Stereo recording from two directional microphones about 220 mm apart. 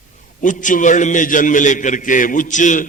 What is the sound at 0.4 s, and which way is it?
A man's voice, 35° left (ahead or behind).